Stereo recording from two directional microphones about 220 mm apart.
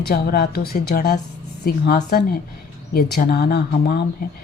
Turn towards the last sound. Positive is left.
turn(degrees=45)  # may be behind; listen again after turning